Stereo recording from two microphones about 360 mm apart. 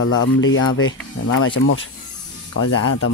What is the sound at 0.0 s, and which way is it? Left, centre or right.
Speech, left.